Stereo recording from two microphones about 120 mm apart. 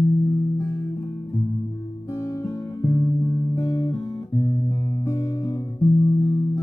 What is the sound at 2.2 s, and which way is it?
Guitar, 25° left (ahead or behind).